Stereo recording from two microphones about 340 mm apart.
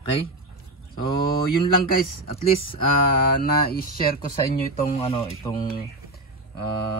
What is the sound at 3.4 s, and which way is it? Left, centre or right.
Speech, left.